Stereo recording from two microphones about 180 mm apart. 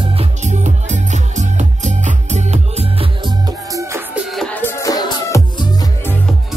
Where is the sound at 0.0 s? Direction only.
30° right (ahead or behind); by 4.2 s 15° right (ahead or behind).